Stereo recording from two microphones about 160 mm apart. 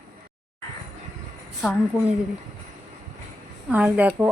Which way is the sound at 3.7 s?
10° right (ahead or behind).